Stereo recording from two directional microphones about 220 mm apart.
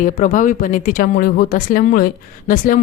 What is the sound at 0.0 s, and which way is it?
Speech, 35° left (ahead or behind).